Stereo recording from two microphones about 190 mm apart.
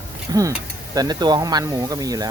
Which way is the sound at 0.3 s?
20° right (ahead or behind).